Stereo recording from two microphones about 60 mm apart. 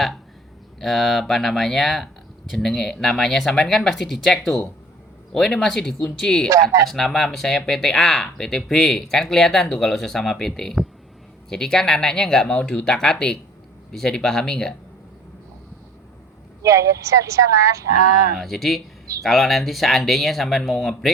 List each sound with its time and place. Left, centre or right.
0.8 s speech: centre
16.6 s speech: right
18.3 s speech: centre